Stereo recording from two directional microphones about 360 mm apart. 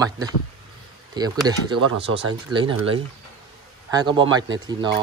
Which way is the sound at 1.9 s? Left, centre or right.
Right.